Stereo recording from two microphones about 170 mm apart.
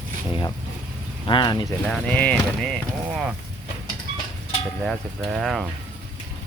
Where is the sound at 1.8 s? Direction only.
5° left (ahead or behind).